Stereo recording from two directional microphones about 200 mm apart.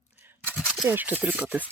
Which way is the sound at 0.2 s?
10° right (ahead or behind).